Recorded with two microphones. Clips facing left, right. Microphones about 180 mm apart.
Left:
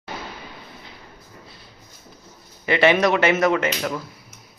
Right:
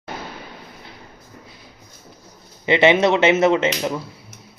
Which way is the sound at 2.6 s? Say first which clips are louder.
Right 2 dB; 20° right (ahead or behind).